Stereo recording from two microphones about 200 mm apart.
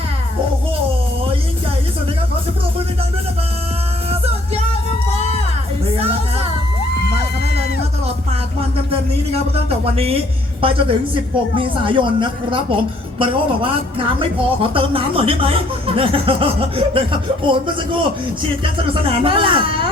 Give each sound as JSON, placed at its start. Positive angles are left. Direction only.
{"t": 6.0, "sound": "speech", "side_deg": -30}
{"t": 8.9, "sound": "speech", "side_deg": -30}